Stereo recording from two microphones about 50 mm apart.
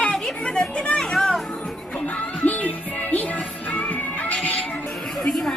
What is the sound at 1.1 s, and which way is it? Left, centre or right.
Speech, centre.